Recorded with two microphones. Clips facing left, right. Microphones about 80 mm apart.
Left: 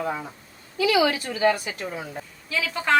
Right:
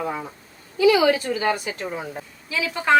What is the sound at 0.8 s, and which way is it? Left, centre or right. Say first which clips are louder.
A woman's voice: right 4 dB; right.